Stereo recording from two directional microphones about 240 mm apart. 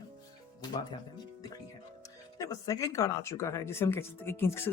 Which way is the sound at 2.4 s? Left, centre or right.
Centre.